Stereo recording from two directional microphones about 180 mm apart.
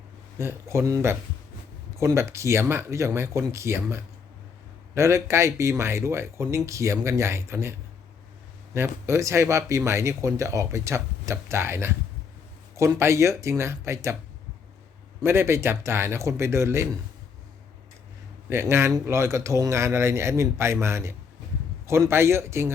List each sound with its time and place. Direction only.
0.3 s speech: 15° right (ahead or behind)
15.2 s speech: 15° right (ahead or behind)
18.4 s speech: 15° right (ahead or behind)